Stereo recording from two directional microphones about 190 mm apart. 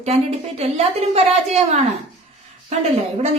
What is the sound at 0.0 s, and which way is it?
A woman's voice, 35° right (ahead or behind).